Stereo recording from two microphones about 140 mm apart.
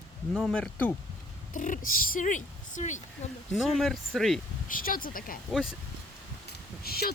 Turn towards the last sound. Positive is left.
turn(degrees=90)